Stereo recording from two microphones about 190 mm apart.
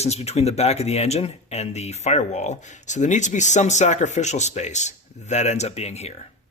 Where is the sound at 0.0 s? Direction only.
35° left (ahead or behind).